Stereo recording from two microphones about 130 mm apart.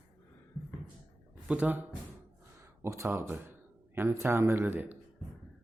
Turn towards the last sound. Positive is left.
turn(degrees=-15)  # may be behind; listen again after turning